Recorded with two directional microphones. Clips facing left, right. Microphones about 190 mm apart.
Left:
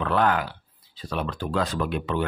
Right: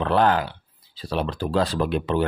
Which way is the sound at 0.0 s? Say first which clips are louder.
Right 3 dB; 30° right (ahead or behind).